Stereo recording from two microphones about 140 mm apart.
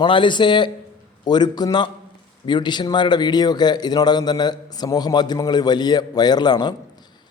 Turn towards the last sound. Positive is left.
turn(degrees=30)  # may be behind; listen again after turning